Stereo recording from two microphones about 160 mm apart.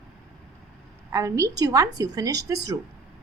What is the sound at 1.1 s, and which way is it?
A woman's voice, 20° right (ahead or behind).